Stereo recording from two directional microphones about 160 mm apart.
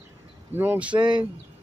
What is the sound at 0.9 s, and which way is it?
Speech, 30° right (ahead or behind).